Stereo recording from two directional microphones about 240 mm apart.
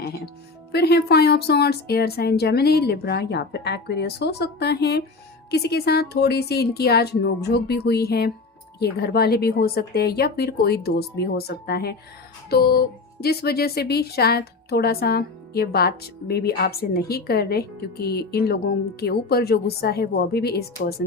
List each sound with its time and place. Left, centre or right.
0.7 s a woman's voice: left